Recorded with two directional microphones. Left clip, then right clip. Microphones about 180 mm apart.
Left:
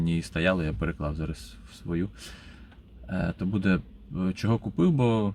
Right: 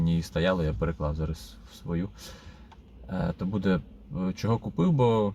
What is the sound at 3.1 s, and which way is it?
Speech, 15° left (ahead or behind).